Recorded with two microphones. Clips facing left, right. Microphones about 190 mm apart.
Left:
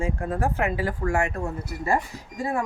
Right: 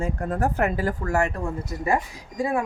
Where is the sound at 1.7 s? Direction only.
15° right (ahead or behind).